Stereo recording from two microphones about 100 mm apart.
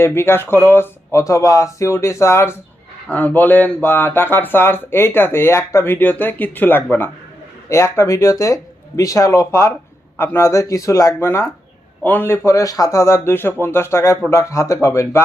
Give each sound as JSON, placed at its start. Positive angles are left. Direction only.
{"t": 0.0, "sound": "speech", "side_deg": 25}